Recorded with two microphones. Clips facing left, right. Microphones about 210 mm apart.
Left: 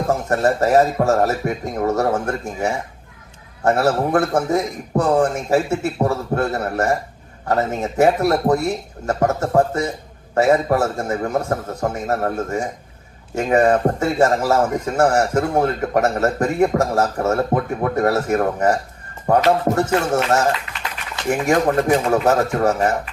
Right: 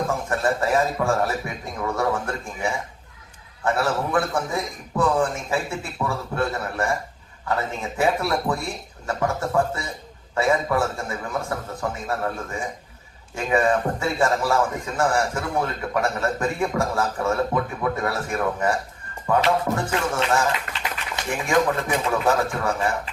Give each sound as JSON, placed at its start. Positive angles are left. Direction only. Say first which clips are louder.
{"t": 0.1, "sound": "a man's voice", "louder": "left 6 dB", "side_deg": 40}
{"t": 20.7, "sound": "a sound", "louder": "right 1 dB", "side_deg": -50}
{"t": 21.2, "sound": "a man's voice", "louder": "left 5 dB", "side_deg": 45}